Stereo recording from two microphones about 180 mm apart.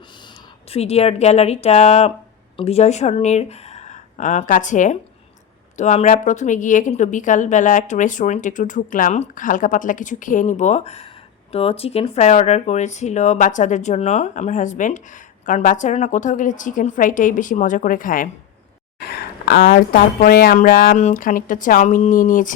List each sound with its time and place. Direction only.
0.7 s speech: 35° left (ahead or behind)
18.9 s speech: 60° left (ahead or behind)